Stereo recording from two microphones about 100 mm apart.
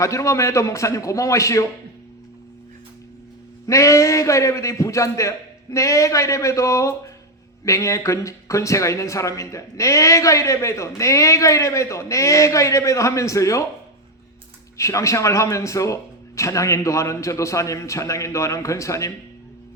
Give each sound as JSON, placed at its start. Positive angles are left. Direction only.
{"t": 0.0, "sound": "speech", "side_deg": 30}
{"t": 3.7, "sound": "speech", "side_deg": 30}
{"t": 14.8, "sound": "speech", "side_deg": 30}